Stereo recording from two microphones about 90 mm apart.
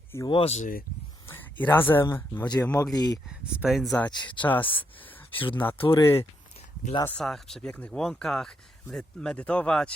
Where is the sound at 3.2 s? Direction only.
10° right (ahead or behind).